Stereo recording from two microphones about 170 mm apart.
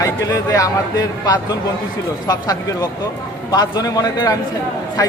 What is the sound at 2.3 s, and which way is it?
A man's voice, 20° left (ahead or behind).